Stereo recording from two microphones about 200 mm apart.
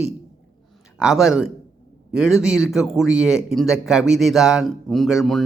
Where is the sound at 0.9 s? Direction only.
5° right (ahead or behind).